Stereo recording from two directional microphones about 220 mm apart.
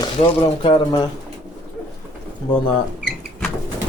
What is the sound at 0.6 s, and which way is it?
Speech, 20° left (ahead or behind).